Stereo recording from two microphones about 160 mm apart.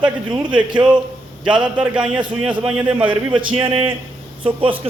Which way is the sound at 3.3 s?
35° right (ahead or behind).